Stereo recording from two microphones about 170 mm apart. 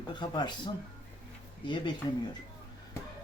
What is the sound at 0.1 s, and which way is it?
Speech, 25° left (ahead or behind).